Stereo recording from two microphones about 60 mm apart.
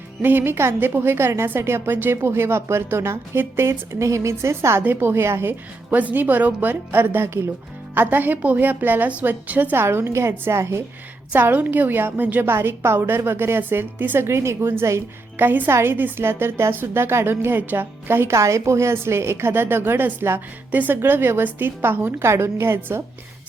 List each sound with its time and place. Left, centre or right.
0.2 s a woman's voice: right
4.8 s speech: right
5.9 s a woman's voice: right
9.7 s speech: right
11.5 s a woman's voice: right
15.4 s a woman's voice: right
18.3 s a woman's voice: right
22.3 s speech: right